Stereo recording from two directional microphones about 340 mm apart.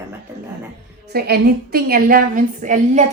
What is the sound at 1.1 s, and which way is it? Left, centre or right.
A woman's voice, right.